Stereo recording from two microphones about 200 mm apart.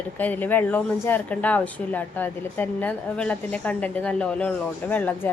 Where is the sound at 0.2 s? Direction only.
10° left (ahead or behind).